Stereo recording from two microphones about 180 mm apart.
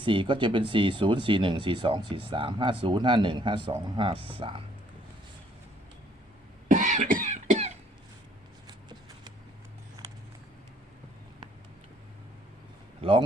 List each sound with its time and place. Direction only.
0.0 s speech: 30° right (ahead or behind)
6.7 s cough: 45° right (ahead or behind)
8.6 s a sound: 25° right (ahead or behind)
13.0 s a man's voice: 30° right (ahead or behind)